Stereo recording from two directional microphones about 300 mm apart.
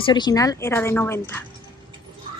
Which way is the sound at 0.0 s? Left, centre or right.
Centre.